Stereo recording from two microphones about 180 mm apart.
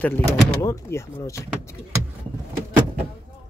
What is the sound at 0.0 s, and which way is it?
Speech, 15° left (ahead or behind).